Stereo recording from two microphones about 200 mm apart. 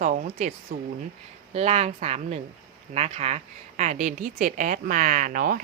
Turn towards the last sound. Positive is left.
turn(degrees=-45)  # may be behind; listen again after turning